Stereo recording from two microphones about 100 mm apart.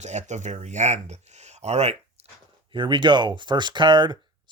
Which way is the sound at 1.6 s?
90° right.